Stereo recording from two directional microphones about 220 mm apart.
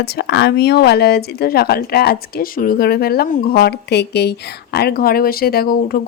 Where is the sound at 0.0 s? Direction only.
50° left (ahead or behind).